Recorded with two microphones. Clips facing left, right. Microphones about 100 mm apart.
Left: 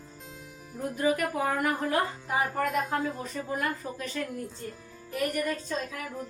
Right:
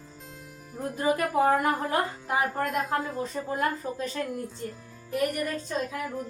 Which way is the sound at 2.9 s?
30° right (ahead or behind).